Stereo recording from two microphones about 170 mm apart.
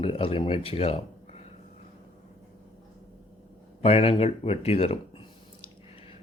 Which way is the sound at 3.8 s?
35° left (ahead or behind).